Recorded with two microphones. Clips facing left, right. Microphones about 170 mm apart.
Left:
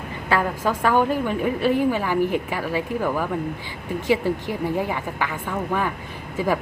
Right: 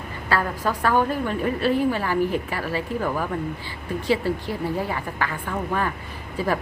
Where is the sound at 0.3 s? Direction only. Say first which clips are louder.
Left 2 dB; 15° left (ahead or behind).